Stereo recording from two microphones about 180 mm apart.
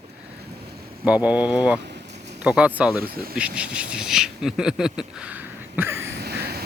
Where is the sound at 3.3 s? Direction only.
5° right (ahead or behind).